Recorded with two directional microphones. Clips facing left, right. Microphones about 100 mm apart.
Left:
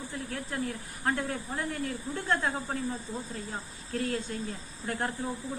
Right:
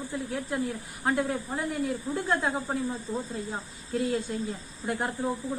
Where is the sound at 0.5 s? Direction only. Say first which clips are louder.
Right 2 dB; 15° right (ahead or behind).